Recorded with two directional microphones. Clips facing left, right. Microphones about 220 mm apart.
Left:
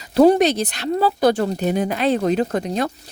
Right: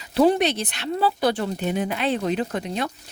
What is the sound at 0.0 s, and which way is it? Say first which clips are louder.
Speech: left 5 dB; 40° left (ahead or behind).